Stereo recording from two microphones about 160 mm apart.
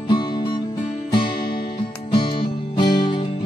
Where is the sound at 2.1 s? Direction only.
30° left (ahead or behind).